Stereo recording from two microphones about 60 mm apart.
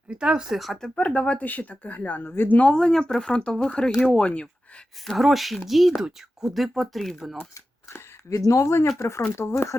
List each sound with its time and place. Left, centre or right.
0.1 s speech: centre
0.6 s speech: centre
0.9 s speech: centre
2.3 s speech: left
2.6 s speech: centre
5.0 s speech: centre
8.4 s speech: left
8.6 s speech: left